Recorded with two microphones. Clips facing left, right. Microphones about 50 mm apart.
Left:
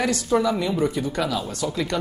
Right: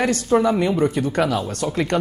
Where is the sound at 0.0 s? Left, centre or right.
Right.